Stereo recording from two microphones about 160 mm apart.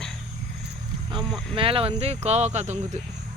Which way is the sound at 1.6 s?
35° right (ahead or behind).